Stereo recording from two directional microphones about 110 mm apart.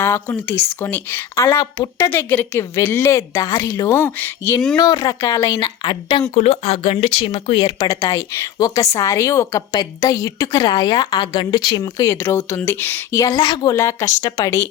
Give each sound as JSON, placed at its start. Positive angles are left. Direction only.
{"t": 0.0, "sound": "a woman's voice", "side_deg": 20}
{"t": 3.8, "sound": "speech", "side_deg": 20}
{"t": 4.8, "sound": "a woman's voice", "side_deg": 35}
{"t": 5.8, "sound": "a woman's voice", "side_deg": 50}
{"t": 6.3, "sound": "speech", "side_deg": 65}
{"t": 7.6, "sound": "a woman's voice", "side_deg": 35}
{"t": 12.1, "sound": "a woman's voice", "side_deg": 20}
{"t": 13.7, "sound": "a woman's voice", "side_deg": 30}